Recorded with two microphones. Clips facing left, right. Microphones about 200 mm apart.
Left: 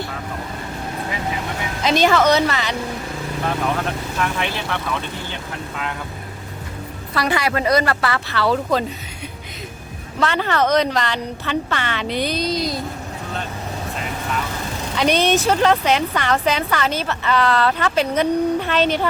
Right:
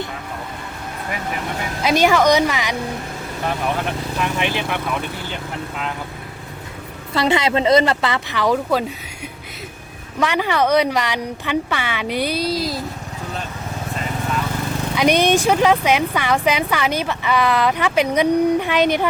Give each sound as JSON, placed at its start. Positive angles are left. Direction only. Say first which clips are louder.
{"t": 1.8, "sound": "speech", "louder": "right 1 dB", "side_deg": -10}
{"t": 4.2, "sound": "speech", "louder": "right 2 dB", "side_deg": -15}
{"t": 7.1, "sound": "speech", "louder": "right 3 dB", "side_deg": -25}
{"t": 10.2, "sound": "speech", "louder": "right 1 dB", "side_deg": -10}
{"t": 14.9, "sound": "speech", "louder": "right 2 dB", "side_deg": -10}